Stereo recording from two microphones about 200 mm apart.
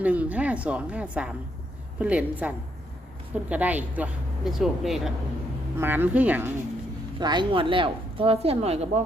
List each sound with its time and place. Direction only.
0.0 s speech: 5° right (ahead or behind)
7.2 s speech: 20° right (ahead or behind)